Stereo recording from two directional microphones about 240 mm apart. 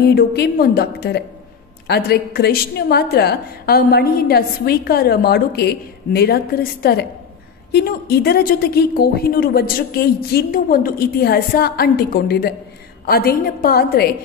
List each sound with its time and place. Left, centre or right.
0.0 s a woman's voice: left